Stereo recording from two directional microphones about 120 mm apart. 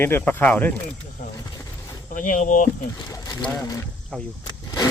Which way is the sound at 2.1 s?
90° left.